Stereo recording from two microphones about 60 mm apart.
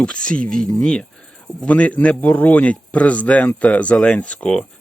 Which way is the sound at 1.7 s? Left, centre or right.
Left.